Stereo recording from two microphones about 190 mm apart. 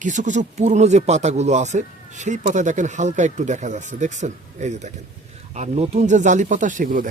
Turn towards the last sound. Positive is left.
turn(degrees=-45)  # may be behind; listen again after turning